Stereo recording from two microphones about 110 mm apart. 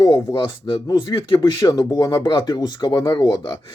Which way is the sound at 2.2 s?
40° left (ahead or behind).